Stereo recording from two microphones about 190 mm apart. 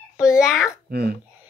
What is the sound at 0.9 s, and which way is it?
Speech, 55° right (ahead or behind).